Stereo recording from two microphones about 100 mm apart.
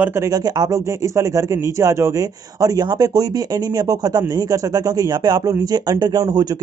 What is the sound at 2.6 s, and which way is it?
A man's voice, 40° right (ahead or behind).